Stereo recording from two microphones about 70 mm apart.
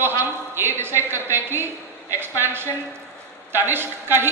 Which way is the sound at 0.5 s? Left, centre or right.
Right.